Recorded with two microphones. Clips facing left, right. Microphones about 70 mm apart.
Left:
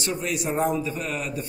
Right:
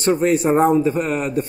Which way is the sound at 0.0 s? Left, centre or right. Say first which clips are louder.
Right 11 dB; right.